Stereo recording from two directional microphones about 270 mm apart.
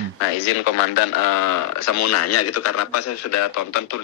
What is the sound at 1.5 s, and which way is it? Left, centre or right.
Speech, left.